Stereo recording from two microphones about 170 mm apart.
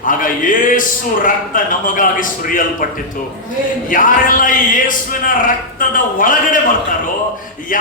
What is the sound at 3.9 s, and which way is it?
Speech, 50° left (ahead or behind).